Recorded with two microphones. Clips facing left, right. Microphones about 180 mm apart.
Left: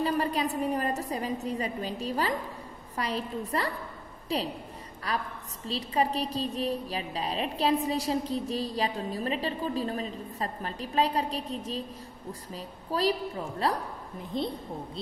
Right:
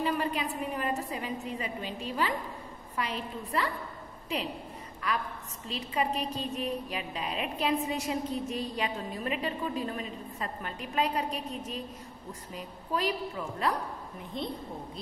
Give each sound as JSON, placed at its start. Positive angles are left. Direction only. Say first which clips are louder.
{"t": 0.0, "sound": "a woman's voice", "louder": "left 3 dB", "side_deg": 35}